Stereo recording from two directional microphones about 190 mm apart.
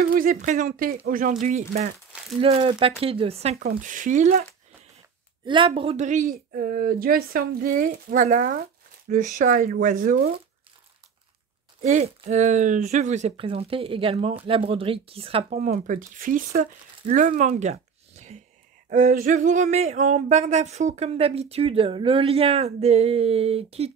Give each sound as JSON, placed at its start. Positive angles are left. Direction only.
{"t": 0.1, "sound": "speech", "side_deg": -45}
{"t": 2.4, "sound": "speech", "side_deg": -30}
{"t": 3.6, "sound": "speech", "side_deg": -45}
{"t": 5.4, "sound": "speech", "side_deg": -25}
{"t": 11.8, "sound": "speech", "side_deg": -35}